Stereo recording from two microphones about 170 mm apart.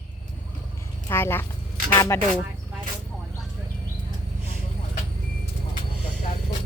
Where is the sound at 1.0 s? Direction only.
15° left (ahead or behind).